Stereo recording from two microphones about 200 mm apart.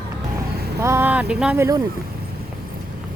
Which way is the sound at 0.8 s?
10° right (ahead or behind).